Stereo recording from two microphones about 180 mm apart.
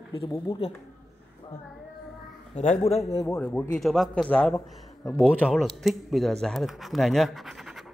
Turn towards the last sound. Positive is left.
turn(degrees=0)  # may be behind; listen again after turning